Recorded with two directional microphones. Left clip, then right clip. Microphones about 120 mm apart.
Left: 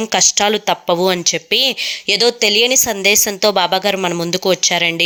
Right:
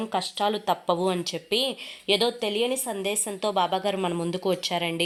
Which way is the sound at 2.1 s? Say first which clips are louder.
Left 9 dB; 50° left (ahead or behind).